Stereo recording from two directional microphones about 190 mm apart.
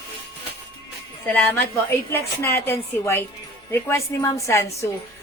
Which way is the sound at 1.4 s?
10° left (ahead or behind).